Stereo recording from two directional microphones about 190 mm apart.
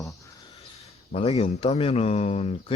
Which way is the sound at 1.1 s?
35° left (ahead or behind).